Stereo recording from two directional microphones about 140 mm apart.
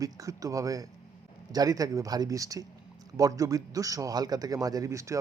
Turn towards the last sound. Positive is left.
turn(degrees=-20)  # may be behind; listen again after turning